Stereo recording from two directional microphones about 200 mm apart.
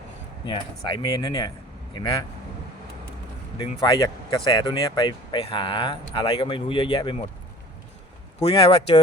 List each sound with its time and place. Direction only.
0.4 s speech: 25° left (ahead or behind)
3.6 s speech: 25° left (ahead or behind)
8.4 s speech: 30° left (ahead or behind)